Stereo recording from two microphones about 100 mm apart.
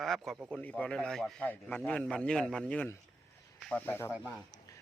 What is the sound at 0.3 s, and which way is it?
Speech, 15° right (ahead or behind).